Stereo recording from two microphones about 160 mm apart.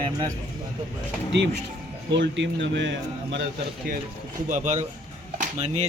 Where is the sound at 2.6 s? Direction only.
90° right.